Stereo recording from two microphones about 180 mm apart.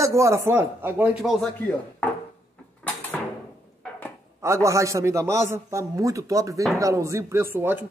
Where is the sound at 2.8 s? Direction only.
10° left (ahead or behind).